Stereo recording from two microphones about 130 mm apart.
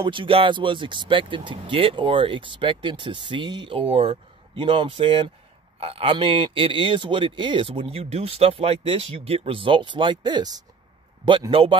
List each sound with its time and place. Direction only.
0.0 s speech: 40° right (ahead or behind)
11.5 s speech: 45° right (ahead or behind)